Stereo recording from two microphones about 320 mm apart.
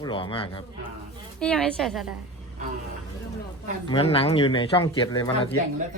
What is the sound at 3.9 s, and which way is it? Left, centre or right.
Speech, centre.